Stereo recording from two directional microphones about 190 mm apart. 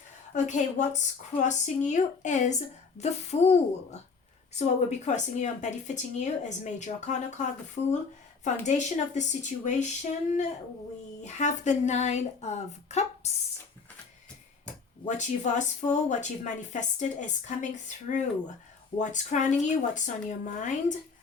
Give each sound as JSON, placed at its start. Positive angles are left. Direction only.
{"t": 0.3, "sound": "speech", "side_deg": 40}
{"t": 15.0, "sound": "speech", "side_deg": 40}